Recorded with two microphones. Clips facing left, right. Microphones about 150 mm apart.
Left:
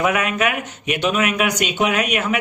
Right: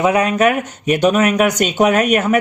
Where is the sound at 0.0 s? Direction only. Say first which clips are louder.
Right 6 dB; 35° right (ahead or behind).